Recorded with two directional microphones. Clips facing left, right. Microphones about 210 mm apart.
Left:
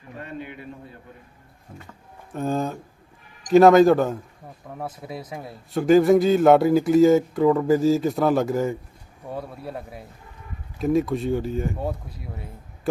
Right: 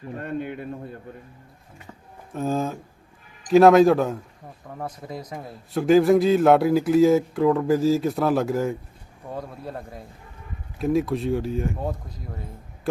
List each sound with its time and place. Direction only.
0.2 s a man's voice: 50° right (ahead or behind)
2.3 s a man's voice: centre (ahead or behind)